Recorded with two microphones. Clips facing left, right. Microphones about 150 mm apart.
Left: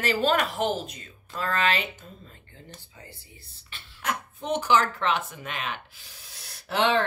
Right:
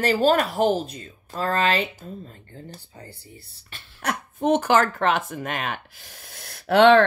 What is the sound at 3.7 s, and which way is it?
Speech, 50° right (ahead or behind).